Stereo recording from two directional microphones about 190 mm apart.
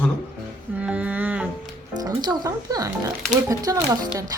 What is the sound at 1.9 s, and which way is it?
Speech, 20° right (ahead or behind).